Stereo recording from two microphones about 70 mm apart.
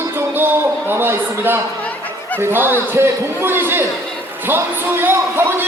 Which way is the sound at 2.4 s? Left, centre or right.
Right.